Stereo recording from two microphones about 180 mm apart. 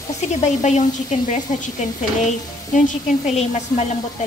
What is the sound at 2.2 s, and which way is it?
A woman's voice, 45° left (ahead or behind).